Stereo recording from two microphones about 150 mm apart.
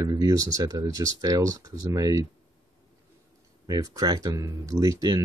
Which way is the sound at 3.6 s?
25° right (ahead or behind).